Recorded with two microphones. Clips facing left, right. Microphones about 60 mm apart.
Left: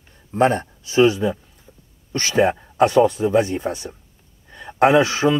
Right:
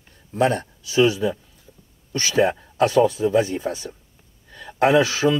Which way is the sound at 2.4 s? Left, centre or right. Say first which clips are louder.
Left 2 dB; centre.